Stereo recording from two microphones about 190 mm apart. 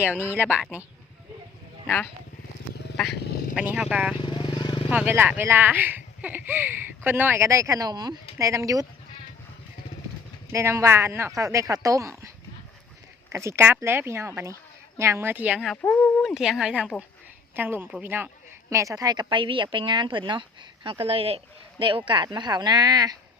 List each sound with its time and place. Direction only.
0.2 s speech: 10° right (ahead or behind)
3.5 s speech: 5° right (ahead or behind)
4.2 s vehicle: 25° left (ahead or behind)
4.9 s speech: 10° right (ahead or behind)
10.5 s speech: 15° right (ahead or behind)
13.3 s speech: 15° right (ahead or behind); by 16.3 s 10° left (ahead or behind)
16.3 s speech: 5° right (ahead or behind); by 23.1 s 20° right (ahead or behind)